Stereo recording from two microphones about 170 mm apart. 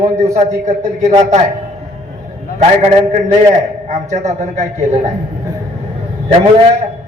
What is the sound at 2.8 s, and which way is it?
A man's voice, 40° right (ahead or behind).